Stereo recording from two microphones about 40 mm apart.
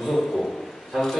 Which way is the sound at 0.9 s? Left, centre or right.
Centre.